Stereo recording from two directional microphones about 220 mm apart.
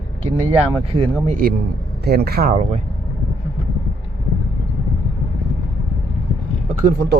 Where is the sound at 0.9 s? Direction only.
25° right (ahead or behind).